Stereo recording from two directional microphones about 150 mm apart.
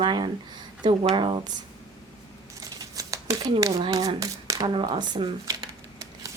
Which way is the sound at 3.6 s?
25° right (ahead or behind).